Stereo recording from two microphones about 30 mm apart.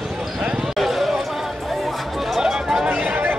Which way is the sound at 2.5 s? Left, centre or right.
Centre.